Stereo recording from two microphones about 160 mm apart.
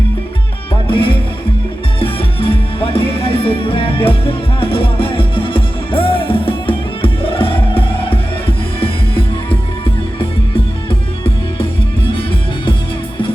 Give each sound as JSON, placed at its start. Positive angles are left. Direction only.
{"t": 0.9, "sound": "music", "side_deg": 35}